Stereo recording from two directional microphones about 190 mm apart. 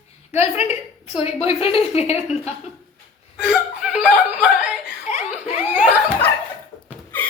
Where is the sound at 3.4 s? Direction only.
5° right (ahead or behind).